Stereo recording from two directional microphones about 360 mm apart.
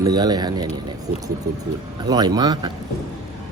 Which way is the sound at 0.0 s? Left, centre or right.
Centre.